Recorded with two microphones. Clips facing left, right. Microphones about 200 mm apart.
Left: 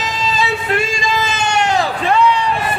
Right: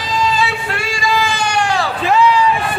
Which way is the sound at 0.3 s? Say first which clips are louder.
Left 2 dB; 20° left (ahead or behind).